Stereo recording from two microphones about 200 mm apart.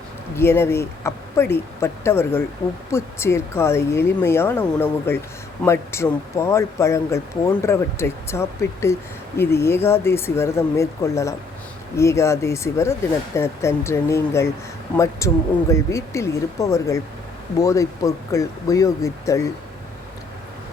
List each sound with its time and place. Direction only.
0.3 s speech: 10° left (ahead or behind)